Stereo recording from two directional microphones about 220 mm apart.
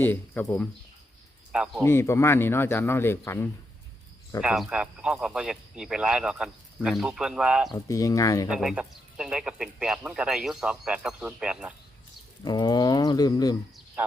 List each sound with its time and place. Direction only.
0.0 s speech: 10° left (ahead or behind)
1.8 s speech: 10° left (ahead or behind)
4.4 s speech: centre (ahead or behind)
7.7 s speech: 15° left (ahead or behind)
8.4 s speech: 5° right (ahead or behind)
12.5 s speech: 20° left (ahead or behind)